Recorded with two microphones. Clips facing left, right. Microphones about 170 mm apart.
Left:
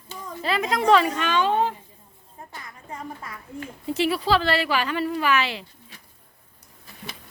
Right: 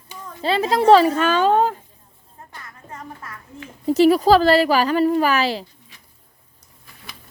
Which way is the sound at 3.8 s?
40° right (ahead or behind).